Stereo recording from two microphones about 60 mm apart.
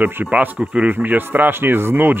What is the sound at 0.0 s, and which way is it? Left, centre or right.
Speech, right.